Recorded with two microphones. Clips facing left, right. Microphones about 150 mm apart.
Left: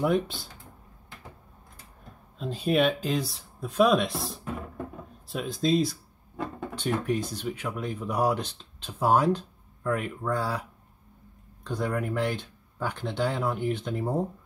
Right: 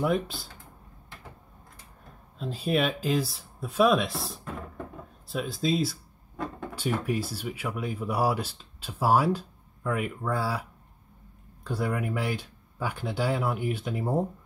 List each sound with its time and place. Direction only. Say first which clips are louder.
0.0 s speech: left 2 dB; centre (ahead or behind)
2.3 s speech: left 2 dB; centre (ahead or behind)
11.6 s speech: even; 10° right (ahead or behind)